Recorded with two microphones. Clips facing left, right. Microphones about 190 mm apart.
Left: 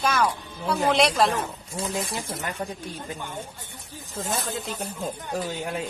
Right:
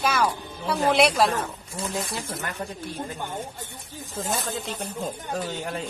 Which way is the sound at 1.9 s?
20° left (ahead or behind).